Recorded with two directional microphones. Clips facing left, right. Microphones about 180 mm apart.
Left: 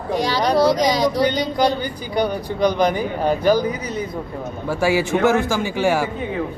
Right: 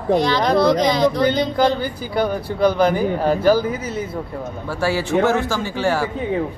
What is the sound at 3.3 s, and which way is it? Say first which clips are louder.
Speech: even; 15° left (ahead or behind).